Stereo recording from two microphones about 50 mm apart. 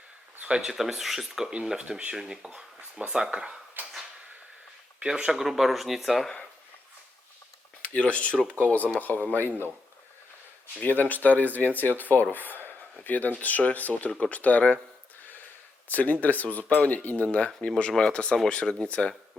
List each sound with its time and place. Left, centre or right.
0.4 s speech: centre
0.7 s speech: centre
5.0 s speech: centre
7.8 s speech: left
9.5 s speech: right
10.8 s speech: left
15.2 s a sound: left
15.9 s speech: left; by 18.9 s centre